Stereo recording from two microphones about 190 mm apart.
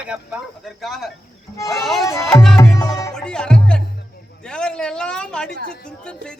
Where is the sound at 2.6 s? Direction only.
15° left (ahead or behind).